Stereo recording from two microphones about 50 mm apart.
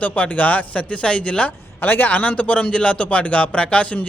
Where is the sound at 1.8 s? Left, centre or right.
Left.